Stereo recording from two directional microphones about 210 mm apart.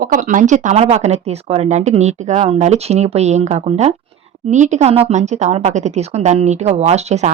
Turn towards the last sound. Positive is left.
turn(degrees=-30)  # may be behind; listen again after turning